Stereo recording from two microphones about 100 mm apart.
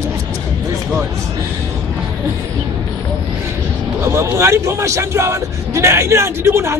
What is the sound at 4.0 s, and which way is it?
Speech, 25° right (ahead or behind).